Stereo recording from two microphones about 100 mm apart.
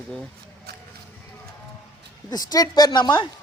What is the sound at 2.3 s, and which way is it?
Speech, 40° left (ahead or behind).